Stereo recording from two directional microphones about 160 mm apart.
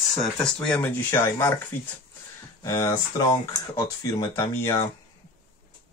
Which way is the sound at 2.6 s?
25° left (ahead or behind).